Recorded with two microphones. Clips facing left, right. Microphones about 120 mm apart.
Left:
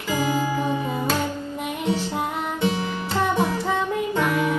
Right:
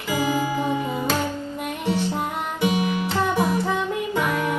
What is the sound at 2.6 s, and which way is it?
Music, 15° right (ahead or behind).